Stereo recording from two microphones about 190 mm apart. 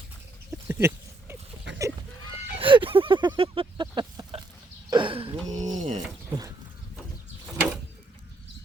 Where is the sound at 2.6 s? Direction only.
25° right (ahead or behind).